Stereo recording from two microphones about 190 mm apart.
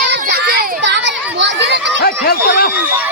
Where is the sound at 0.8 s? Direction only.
70° right (ahead or behind).